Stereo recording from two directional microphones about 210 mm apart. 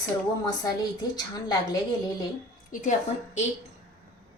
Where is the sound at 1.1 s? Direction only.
20° left (ahead or behind).